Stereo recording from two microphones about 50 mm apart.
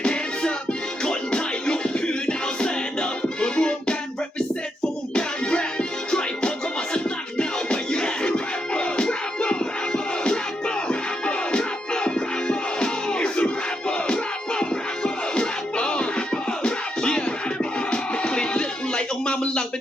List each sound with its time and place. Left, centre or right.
0.0 s music: centre
5.1 s music: centre